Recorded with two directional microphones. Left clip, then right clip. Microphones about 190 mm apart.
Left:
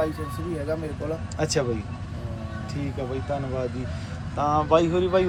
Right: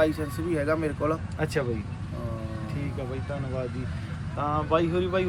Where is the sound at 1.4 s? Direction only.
15° left (ahead or behind).